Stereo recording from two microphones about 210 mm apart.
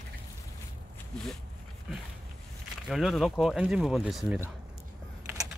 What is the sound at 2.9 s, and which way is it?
Speech, centre (ahead or behind).